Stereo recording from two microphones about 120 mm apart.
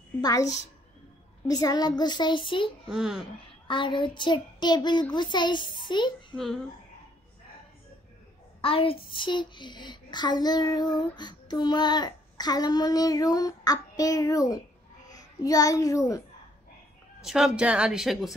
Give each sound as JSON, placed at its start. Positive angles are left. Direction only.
{"t": 0.2, "sound": "a woman's voice", "side_deg": 30}
{"t": 2.9, "sound": "a child's voice", "side_deg": -5}
{"t": 3.6, "sound": "a child's voice", "side_deg": 45}
{"t": 6.3, "sound": "a child's voice", "side_deg": 5}
{"t": 8.5, "sound": "a child's voice", "side_deg": 50}
{"t": 17.2, "sound": "a woman's voice", "side_deg": -5}